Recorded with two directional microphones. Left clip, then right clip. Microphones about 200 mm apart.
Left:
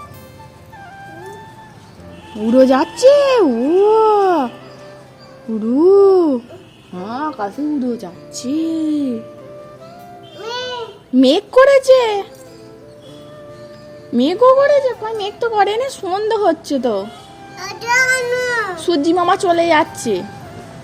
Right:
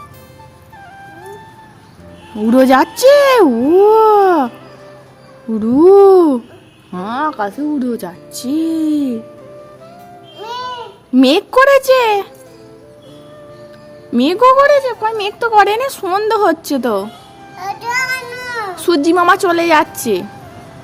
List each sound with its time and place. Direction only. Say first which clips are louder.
2.5 s speech: right 2 dB; 40° right (ahead or behind)
5.5 s speech: right 4 dB; 35° right (ahead or behind)
10.4 s babbling: right 1 dB; centre (ahead or behind)
11.1 s speech: right 1 dB; 35° right (ahead or behind)
14.1 s speech: right 2 dB; 35° right (ahead or behind)
17.7 s a child's voice: left 3 dB; 5° left (ahead or behind)
18.8 s speech: right 6 dB; 40° right (ahead or behind)